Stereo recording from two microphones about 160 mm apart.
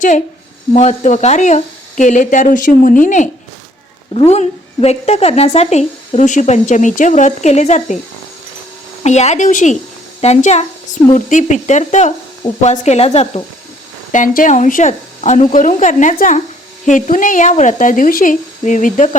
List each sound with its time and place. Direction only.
0.7 s speech: 45° left (ahead or behind)
4.3 s speech: 40° left (ahead or behind)
9.0 s speech: 45° left (ahead or behind)
14.1 s speech: 50° left (ahead or behind)